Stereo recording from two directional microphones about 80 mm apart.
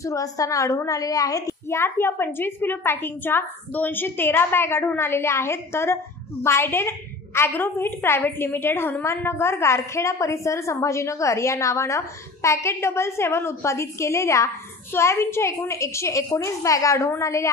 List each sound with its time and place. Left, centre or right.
0.0 s a woman's voice: left